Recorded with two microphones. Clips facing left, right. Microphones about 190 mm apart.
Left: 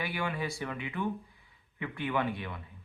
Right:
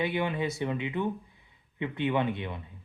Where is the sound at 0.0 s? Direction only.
20° right (ahead or behind).